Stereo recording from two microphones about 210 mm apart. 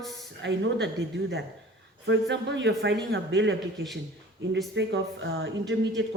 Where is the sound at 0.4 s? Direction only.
55° right (ahead or behind).